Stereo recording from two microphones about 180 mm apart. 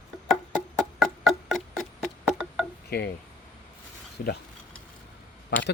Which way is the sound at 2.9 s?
60° left (ahead or behind).